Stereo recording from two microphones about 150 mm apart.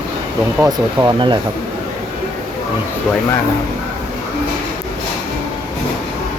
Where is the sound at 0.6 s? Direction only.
25° right (ahead or behind).